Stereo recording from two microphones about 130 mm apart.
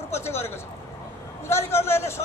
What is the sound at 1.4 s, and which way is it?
Speech, 20° left (ahead or behind).